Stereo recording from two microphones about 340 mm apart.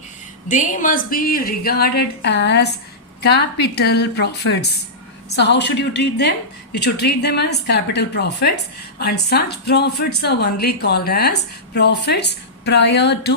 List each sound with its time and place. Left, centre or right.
0.4 s speech: left